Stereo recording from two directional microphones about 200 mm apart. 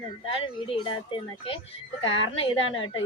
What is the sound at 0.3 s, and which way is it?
A woman's voice, 25° left (ahead or behind).